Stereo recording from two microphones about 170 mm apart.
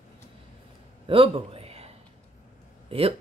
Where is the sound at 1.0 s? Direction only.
30° right (ahead or behind).